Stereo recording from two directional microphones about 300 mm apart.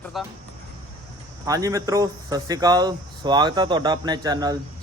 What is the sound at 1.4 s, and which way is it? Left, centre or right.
Speech, centre.